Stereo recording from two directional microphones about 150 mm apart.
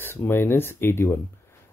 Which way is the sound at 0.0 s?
15° left (ahead or behind).